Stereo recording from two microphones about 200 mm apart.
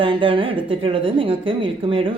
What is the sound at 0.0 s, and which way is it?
Speech, 25° right (ahead or behind).